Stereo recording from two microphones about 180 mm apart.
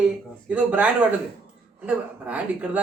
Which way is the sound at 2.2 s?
5° right (ahead or behind).